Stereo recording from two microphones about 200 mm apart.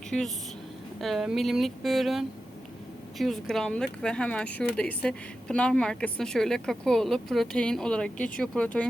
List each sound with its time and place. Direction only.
0.1 s speech: 5° left (ahead or behind)